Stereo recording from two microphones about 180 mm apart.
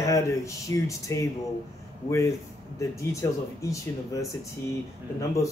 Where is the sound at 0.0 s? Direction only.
15° left (ahead or behind).